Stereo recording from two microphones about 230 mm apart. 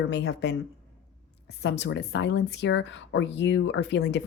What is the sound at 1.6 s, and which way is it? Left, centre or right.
A woman's voice, left.